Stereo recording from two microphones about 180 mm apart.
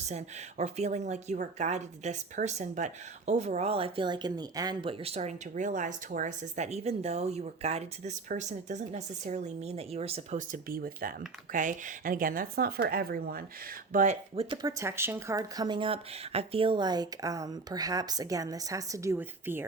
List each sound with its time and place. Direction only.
0.0 s speech: 40° right (ahead or behind)
10.5 s speech: 55° right (ahead or behind)
14.3 s speech: 25° right (ahead or behind)